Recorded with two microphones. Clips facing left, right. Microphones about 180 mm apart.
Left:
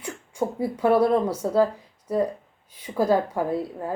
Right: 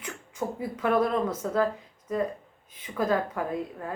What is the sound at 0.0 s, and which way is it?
A woman's voice, 30° left (ahead or behind).